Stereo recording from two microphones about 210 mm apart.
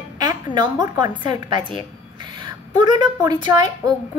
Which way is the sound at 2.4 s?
20° right (ahead or behind).